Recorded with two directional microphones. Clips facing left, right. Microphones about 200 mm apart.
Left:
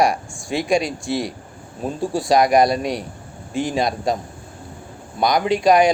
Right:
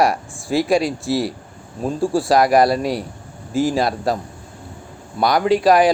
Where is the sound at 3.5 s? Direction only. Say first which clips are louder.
Right 3 dB; centre (ahead or behind).